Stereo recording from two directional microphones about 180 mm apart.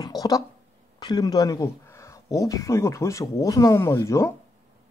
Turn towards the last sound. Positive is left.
turn(degrees=15)  # may be behind; listen again after turning